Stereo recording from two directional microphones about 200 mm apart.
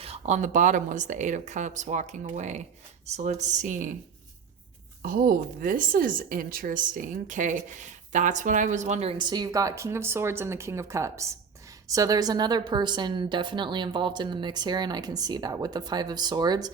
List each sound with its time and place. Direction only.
0.0 s a woman's voice: 30° right (ahead or behind)
5.0 s a woman's voice: 45° right (ahead or behind); by 16.6 s 20° right (ahead or behind)